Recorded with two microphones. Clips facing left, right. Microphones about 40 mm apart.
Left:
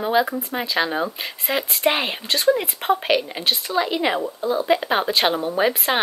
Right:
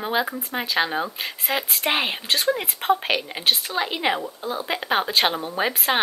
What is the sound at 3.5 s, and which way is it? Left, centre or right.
Speech, centre.